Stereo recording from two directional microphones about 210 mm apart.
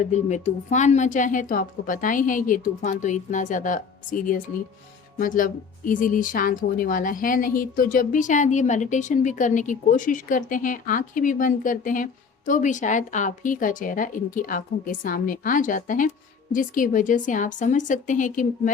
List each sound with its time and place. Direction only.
0.0 s speech: 35° left (ahead or behind)